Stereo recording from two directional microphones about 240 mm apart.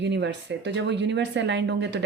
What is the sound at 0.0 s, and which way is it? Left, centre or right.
Speech, right.